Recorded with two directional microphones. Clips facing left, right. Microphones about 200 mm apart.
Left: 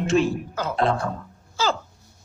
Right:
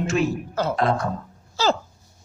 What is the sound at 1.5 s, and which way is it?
Babbling, 40° right (ahead or behind).